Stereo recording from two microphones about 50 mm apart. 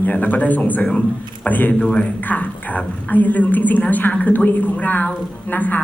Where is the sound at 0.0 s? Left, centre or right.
Left.